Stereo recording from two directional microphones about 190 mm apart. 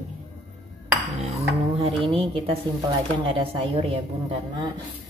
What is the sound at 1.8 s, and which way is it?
A woman's voice, 30° right (ahead or behind).